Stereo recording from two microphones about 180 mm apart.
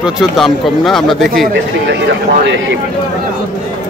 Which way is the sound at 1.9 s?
70° right (ahead or behind).